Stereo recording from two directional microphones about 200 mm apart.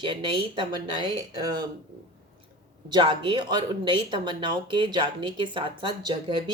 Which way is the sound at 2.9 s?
25° right (ahead or behind).